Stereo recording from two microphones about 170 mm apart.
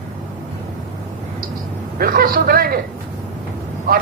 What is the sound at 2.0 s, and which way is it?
Speech, 60° right (ahead or behind).